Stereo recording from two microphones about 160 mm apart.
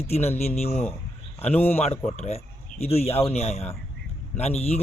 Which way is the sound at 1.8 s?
45° left (ahead or behind).